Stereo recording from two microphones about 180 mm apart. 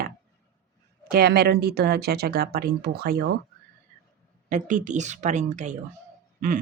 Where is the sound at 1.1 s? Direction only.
60° right (ahead or behind).